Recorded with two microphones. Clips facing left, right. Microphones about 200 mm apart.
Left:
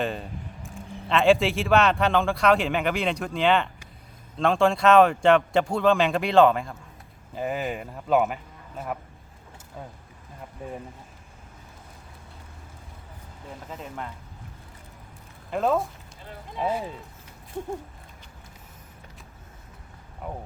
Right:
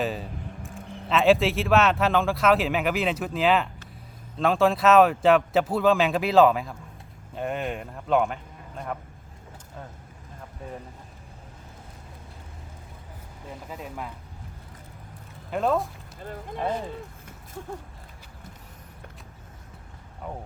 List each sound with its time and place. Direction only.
0.0 s speech: centre (ahead or behind)
13.7 s speech: 5° right (ahead or behind)
15.4 s speech: centre (ahead or behind)
17.5 s a sound: 20° left (ahead or behind)